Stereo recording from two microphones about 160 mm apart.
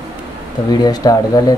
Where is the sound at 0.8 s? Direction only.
25° left (ahead or behind).